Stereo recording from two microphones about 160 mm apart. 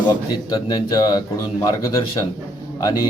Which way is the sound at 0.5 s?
25° left (ahead or behind).